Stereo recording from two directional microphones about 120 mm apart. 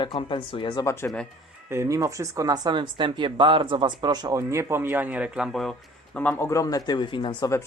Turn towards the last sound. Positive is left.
turn(degrees=40)  # may be behind; listen again after turning